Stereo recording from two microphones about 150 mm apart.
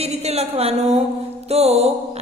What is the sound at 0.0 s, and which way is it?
A woman's voice, 45° right (ahead or behind).